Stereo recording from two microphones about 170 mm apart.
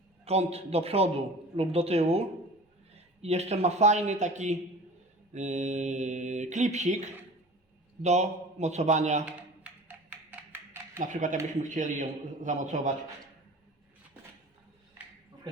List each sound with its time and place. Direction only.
0.3 s a man's voice: 35° right (ahead or behind)
5.3 s mantra: 45° right (ahead or behind)
8.0 s a man's voice: 40° right (ahead or behind)
9.2 s music: 10° right (ahead or behind)
10.9 s mantra: 50° right (ahead or behind)